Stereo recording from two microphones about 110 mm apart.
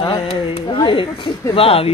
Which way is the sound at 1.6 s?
60° left (ahead or behind).